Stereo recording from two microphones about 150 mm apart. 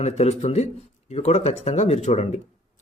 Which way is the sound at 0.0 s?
45° left (ahead or behind).